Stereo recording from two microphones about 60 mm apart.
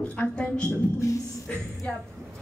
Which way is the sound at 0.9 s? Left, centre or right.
Left.